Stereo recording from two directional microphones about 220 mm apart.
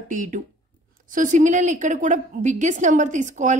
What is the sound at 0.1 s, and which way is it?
A woman's voice, 35° right (ahead or behind).